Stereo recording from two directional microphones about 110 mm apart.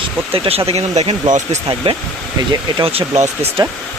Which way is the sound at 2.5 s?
60° right (ahead or behind).